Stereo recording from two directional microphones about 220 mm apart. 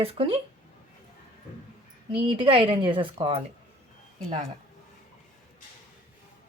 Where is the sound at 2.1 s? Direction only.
25° right (ahead or behind).